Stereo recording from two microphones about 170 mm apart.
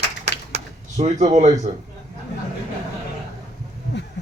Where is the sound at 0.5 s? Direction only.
40° right (ahead or behind).